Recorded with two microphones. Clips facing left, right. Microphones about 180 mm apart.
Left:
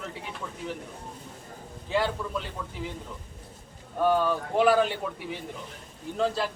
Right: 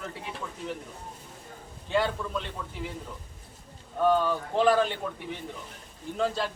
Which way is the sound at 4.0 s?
10° left (ahead or behind).